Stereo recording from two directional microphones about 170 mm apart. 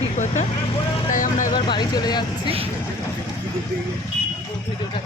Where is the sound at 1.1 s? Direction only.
50° left (ahead or behind).